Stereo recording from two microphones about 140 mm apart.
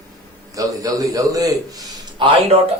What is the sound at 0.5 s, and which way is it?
A man's voice, 25° right (ahead or behind).